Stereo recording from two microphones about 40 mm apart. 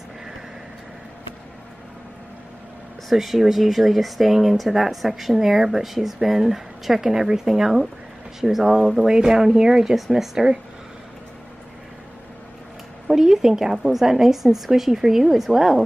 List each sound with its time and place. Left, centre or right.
3.1 s a woman's voice: centre
9.9 s speech: centre
13.1 s a woman's voice: centre